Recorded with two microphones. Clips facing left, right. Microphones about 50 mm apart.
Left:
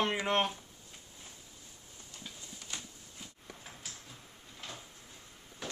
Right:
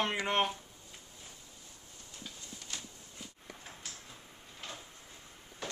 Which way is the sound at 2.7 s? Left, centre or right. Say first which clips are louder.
Left 1 dB; left.